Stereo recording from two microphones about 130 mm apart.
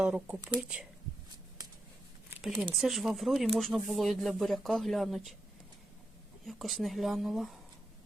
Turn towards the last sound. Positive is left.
turn(degrees=0)  # may be behind; listen again after turning